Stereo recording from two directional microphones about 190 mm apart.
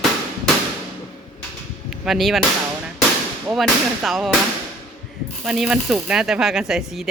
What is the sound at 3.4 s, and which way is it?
Speech, centre (ahead or behind).